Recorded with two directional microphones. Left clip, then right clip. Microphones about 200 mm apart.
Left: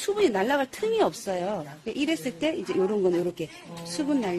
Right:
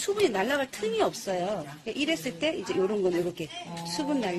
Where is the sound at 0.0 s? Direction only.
50° left (ahead or behind).